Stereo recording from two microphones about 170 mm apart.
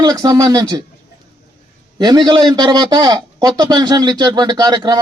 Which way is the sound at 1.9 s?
25° right (ahead or behind).